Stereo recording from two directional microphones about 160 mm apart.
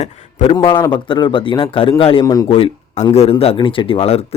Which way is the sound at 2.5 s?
35° left (ahead or behind).